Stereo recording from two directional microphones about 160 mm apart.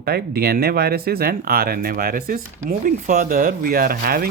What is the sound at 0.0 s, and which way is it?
Speech, 75° right (ahead or behind).